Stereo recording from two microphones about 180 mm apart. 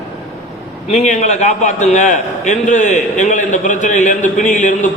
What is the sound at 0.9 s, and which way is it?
A man's voice, 40° left (ahead or behind).